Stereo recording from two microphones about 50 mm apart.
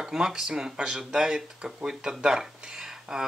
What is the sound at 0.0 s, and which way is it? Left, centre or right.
Speech, centre.